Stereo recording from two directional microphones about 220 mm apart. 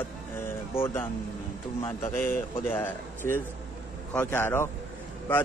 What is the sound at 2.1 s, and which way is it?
Speech, 10° left (ahead or behind).